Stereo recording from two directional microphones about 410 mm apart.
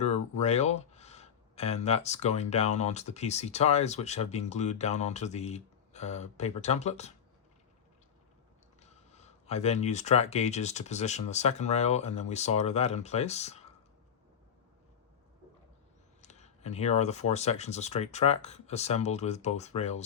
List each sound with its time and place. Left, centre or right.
0.0 s speech: centre
8.8 s speech: centre
16.2 s speech: centre